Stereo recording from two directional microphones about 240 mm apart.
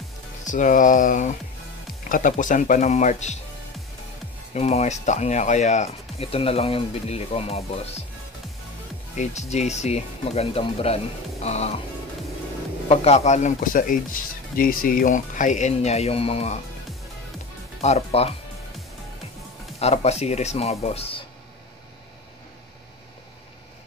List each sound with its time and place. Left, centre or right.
0.5 s speech: left
4.6 s speech: left
9.1 s speech: left
12.8 s speech: left
17.8 s speech: left
19.8 s speech: left